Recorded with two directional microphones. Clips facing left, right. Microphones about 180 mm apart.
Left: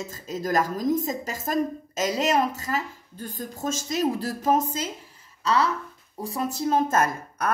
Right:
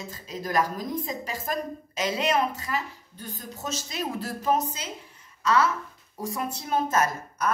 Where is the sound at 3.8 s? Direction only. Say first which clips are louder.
Left 9 dB; 45° left (ahead or behind).